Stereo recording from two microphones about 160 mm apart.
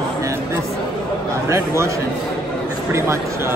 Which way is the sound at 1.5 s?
15° right (ahead or behind).